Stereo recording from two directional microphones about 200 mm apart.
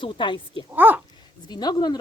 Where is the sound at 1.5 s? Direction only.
20° left (ahead or behind).